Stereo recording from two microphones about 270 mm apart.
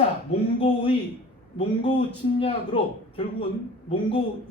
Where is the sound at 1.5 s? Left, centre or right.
Centre.